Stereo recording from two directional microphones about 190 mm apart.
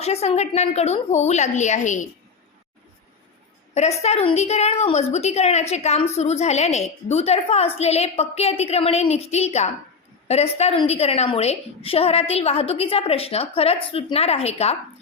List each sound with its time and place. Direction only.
0.0 s a woman's voice: 35° left (ahead or behind)
3.8 s a woman's voice: 35° left (ahead or behind)